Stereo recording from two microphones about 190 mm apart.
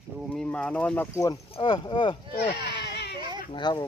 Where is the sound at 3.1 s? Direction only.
25° right (ahead or behind).